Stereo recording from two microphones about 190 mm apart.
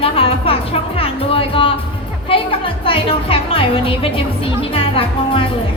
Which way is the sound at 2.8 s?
30° left (ahead or behind).